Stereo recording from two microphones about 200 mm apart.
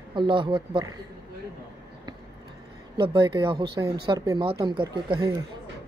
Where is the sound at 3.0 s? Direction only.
25° right (ahead or behind).